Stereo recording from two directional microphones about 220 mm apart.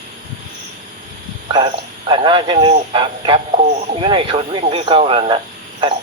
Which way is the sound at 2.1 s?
20° right (ahead or behind).